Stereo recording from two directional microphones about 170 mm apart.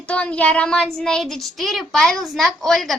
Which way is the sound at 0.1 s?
5° left (ahead or behind).